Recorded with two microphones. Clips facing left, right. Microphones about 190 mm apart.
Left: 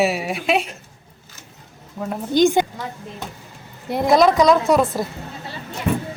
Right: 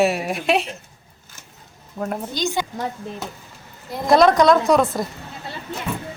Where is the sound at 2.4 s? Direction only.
55° left (ahead or behind).